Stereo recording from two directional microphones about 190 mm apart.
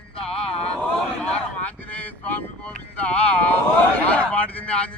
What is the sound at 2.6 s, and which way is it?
Wind noise, 5° left (ahead or behind).